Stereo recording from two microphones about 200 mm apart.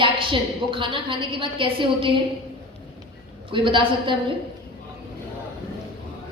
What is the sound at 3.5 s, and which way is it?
Speech, 25° right (ahead or behind).